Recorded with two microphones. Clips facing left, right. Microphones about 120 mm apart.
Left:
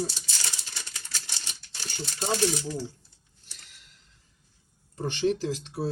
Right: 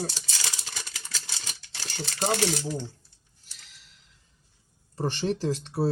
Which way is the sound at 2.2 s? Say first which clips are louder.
Right 1 dB; 80° right.